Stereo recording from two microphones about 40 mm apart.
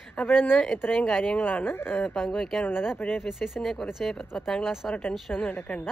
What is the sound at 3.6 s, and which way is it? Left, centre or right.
Speech, centre.